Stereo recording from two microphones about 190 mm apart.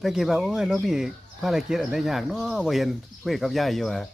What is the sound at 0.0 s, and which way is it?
Speech, centre (ahead or behind).